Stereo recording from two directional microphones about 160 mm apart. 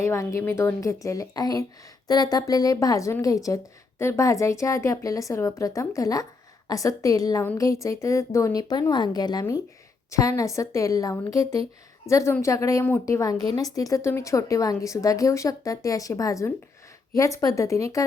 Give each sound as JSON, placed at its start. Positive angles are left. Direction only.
{"t": 0.0, "sound": "a woman's voice", "side_deg": 15}